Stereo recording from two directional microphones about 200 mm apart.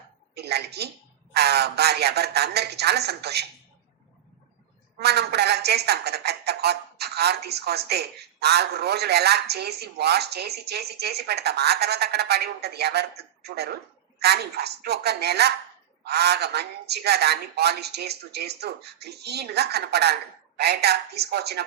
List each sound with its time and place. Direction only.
0.3 s a sound: 55° right (ahead or behind)
1.3 s speech: 55° right (ahead or behind)
4.9 s speech: 55° right (ahead or behind)